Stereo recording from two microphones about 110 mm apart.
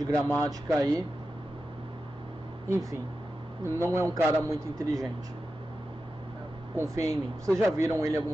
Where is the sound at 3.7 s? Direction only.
25° right (ahead or behind).